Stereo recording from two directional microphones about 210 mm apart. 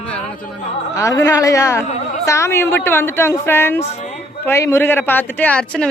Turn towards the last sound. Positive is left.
turn(degrees=5)  # may be behind; listen again after turning